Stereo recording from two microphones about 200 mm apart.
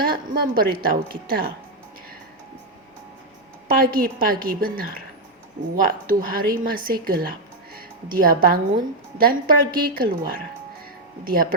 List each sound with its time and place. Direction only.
0.0 s a woman's voice: 45° right (ahead or behind)
3.7 s a woman's voice: 45° right (ahead or behind)